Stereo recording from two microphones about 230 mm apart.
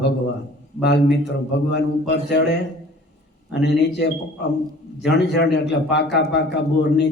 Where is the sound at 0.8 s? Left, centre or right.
Left.